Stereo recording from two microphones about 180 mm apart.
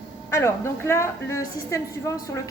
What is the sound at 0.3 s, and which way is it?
A woman's voice, 15° left (ahead or behind).